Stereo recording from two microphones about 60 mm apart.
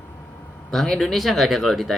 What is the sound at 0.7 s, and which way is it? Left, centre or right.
Speech, centre.